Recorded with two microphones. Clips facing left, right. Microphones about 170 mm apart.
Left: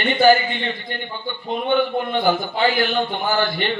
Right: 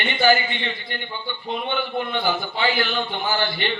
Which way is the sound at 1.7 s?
45° left (ahead or behind).